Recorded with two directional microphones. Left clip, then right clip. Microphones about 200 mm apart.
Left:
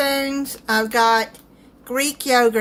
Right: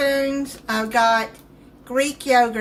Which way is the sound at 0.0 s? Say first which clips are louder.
Right 1 dB; 50° left (ahead or behind).